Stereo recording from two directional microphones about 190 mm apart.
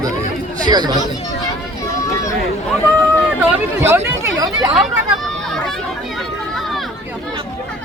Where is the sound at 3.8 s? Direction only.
10° right (ahead or behind).